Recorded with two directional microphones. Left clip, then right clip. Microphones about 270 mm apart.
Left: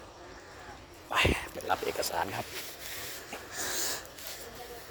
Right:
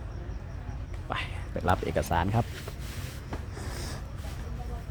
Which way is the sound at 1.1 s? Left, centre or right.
Left.